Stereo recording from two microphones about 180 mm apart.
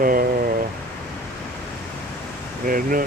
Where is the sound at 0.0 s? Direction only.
50° right (ahead or behind).